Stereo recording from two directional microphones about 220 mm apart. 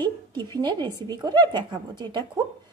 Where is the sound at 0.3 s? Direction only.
20° right (ahead or behind).